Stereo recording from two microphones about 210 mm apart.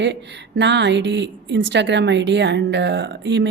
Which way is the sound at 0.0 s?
55° right (ahead or behind).